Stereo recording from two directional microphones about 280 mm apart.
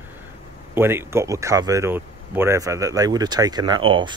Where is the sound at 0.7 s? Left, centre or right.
Centre.